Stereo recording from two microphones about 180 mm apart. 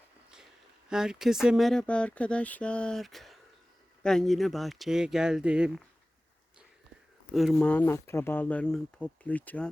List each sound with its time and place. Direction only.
0.9 s speech: 5° right (ahead or behind)
7.3 s speech: 5° left (ahead or behind)